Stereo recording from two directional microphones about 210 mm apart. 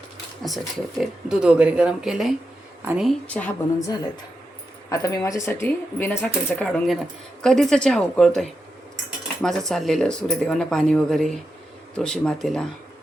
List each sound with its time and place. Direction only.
0.4 s speech: centre (ahead or behind)